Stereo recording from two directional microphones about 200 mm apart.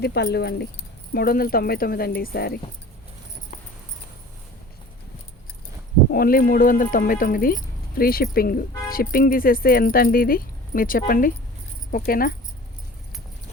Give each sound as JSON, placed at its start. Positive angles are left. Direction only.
{"t": 0.0, "sound": "speech", "side_deg": 55}
{"t": 6.1, "sound": "speech", "side_deg": 45}